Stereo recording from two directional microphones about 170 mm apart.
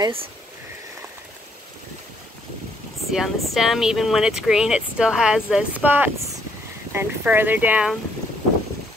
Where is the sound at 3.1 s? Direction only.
Centre (ahead or behind).